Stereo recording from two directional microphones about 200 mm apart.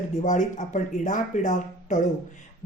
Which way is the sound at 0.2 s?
40° left (ahead or behind).